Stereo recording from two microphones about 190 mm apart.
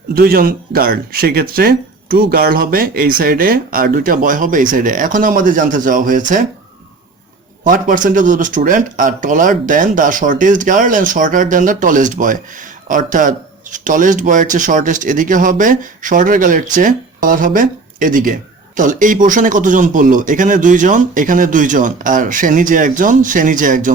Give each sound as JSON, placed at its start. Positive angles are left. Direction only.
{"t": 0.1, "sound": "speech", "side_deg": -50}
{"t": 7.6, "sound": "speech", "side_deg": -45}